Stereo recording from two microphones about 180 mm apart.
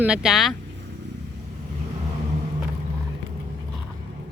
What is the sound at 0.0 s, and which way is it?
Speech, 5° right (ahead or behind).